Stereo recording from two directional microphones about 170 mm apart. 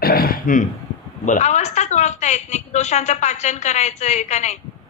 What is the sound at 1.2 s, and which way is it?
A woman's voice, 45° left (ahead or behind).